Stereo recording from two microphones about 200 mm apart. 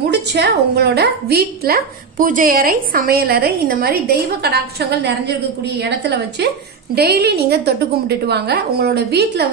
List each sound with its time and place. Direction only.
0.0 s a woman's voice: 60° right (ahead or behind)